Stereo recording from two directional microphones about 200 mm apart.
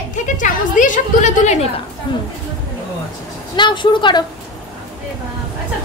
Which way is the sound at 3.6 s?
25° left (ahead or behind).